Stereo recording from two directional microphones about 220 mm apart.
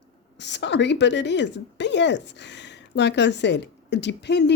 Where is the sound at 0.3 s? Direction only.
50° left (ahead or behind).